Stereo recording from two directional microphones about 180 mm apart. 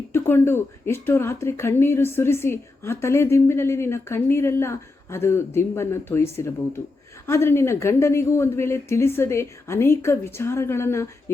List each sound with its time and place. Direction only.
0.1 s speech: 15° left (ahead or behind)